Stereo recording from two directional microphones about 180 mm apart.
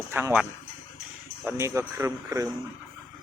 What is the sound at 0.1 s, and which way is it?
Speech, 10° right (ahead or behind).